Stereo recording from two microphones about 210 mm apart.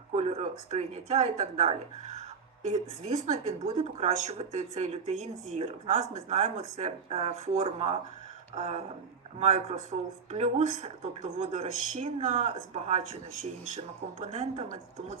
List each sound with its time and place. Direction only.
0.1 s speech: 30° right (ahead or behind)